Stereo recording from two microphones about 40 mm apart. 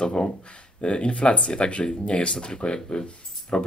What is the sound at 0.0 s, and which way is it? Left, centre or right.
Speech, left.